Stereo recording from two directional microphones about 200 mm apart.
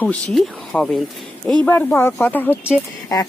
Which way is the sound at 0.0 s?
5° left (ahead or behind).